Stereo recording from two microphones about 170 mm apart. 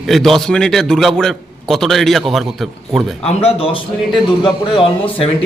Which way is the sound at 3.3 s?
35° left (ahead or behind).